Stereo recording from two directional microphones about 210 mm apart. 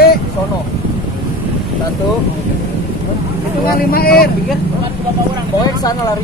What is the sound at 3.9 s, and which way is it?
Speech, 45° left (ahead or behind).